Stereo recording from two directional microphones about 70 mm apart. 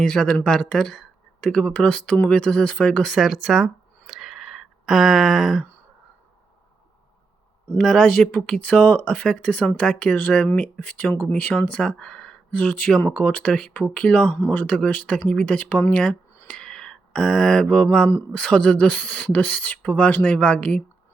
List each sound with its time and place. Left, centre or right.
0.0 s speech: centre
3.2 s a sound: centre
7.8 s speech: centre
12.5 s speech: centre
16.5 s a sound: centre
18.3 s speech: centre